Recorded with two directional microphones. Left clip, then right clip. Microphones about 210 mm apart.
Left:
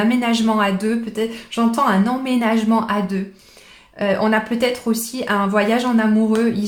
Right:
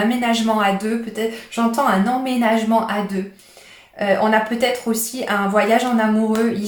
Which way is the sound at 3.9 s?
30° left (ahead or behind).